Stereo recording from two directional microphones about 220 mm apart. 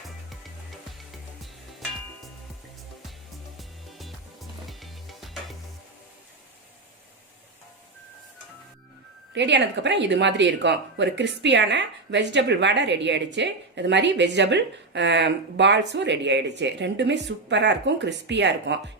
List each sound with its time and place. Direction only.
3.6 s music: centre (ahead or behind)
9.3 s speech: 50° right (ahead or behind)